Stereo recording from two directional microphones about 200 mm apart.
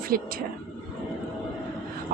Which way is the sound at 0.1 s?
45° right (ahead or behind).